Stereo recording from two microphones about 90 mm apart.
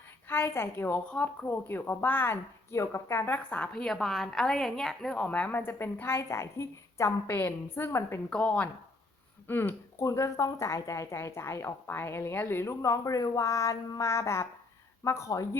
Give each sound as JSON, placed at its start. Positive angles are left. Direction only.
{"t": 0.3, "sound": "a woman's voice", "side_deg": 25}
{"t": 1.5, "sound": "a woman's voice", "side_deg": 25}
{"t": 3.3, "sound": "a woman's voice", "side_deg": 15}
{"t": 7.3, "sound": "a woman's voice", "side_deg": 20}
{"t": 8.3, "sound": "a woman's voice", "side_deg": 10}
{"t": 9.5, "sound": "speech", "side_deg": 25}
{"t": 10.1, "sound": "a woman's voice", "side_deg": 35}